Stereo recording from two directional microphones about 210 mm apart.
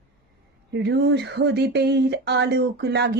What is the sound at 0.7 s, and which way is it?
Speech, 50° right (ahead or behind).